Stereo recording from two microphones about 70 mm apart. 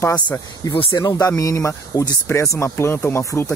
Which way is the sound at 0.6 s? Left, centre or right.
Left.